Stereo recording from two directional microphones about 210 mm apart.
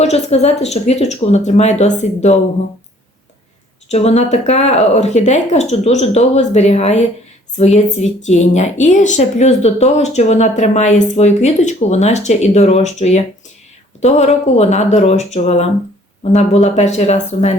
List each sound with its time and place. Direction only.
0.0 s speech: 30° left (ahead or behind)
3.9 s speech: 30° left (ahead or behind)